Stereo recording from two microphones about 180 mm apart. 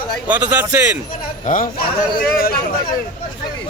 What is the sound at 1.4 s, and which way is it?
A man's voice, 50° left (ahead or behind).